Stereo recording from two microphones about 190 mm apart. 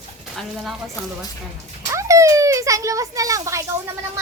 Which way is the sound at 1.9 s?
15° right (ahead or behind).